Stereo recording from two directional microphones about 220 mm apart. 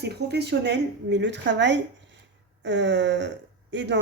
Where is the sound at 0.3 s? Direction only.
50° right (ahead or behind).